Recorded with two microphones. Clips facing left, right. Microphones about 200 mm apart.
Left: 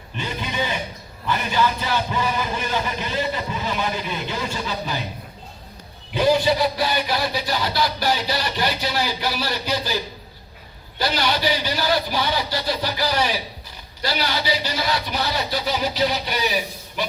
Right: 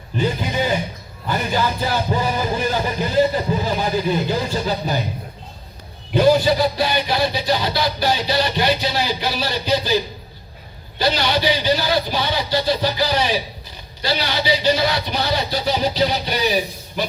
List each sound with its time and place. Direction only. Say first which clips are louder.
0.2 s music: right 6 dB; 40° right (ahead or behind)
6.1 s speech: right 3 dB; 35° right (ahead or behind)
14.6 s speech: right 6 dB; 25° right (ahead or behind)